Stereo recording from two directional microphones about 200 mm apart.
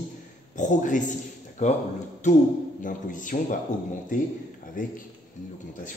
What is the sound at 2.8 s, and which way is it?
A man's voice, 40° left (ahead or behind).